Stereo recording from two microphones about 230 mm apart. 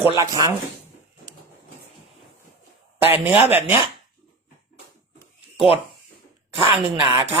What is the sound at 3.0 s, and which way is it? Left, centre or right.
Speech, centre.